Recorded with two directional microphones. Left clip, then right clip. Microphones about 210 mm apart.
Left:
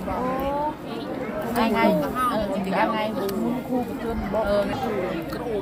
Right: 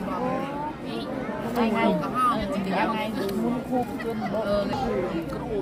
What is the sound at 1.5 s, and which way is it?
Speech, 10° left (ahead or behind).